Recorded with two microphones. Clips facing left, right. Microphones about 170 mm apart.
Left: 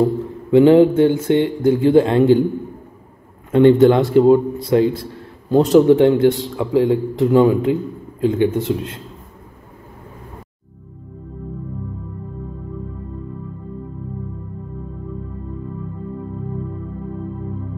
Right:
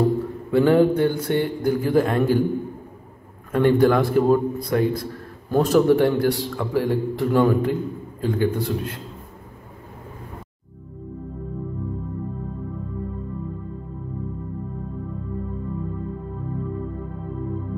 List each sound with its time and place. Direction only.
0.5 s a man's voice: 20° left (ahead or behind)
3.5 s a man's voice: 25° left (ahead or behind)